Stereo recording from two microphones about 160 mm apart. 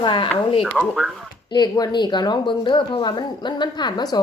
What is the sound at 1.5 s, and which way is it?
Speech, 25° left (ahead or behind).